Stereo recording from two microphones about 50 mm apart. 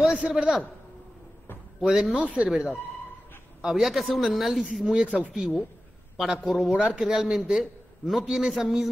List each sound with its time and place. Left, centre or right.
0.0 s a man's voice: centre
1.8 s a man's voice: centre
2.1 s speech: right
3.6 s speech: centre
4.9 s a man's voice: centre